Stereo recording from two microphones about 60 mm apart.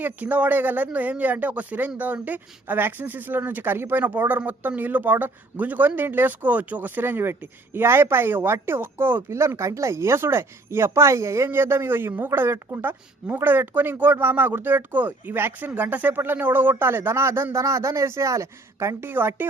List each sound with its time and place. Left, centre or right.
0.0 s speech: right
9.6 s speech: right
11.4 s speech: right
17.6 s speech: right
19.0 s speech: right